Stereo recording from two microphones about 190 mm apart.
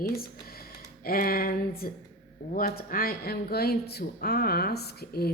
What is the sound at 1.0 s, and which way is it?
A woman's voice, 50° left (ahead or behind).